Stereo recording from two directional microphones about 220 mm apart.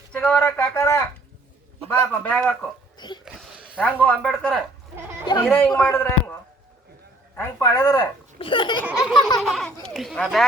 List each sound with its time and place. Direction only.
0.1 s speech: 5° left (ahead or behind)
2.2 s speech: 5° left (ahead or behind)
3.2 s a sound: centre (ahead or behind)
4.0 s speech: 5° left (ahead or behind)
5.2 s speech: 20° left (ahead or behind)
7.3 s speech: 10° left (ahead or behind)
8.9 s a sound: 5° right (ahead or behind)
9.4 s a child's voice: centre (ahead or behind)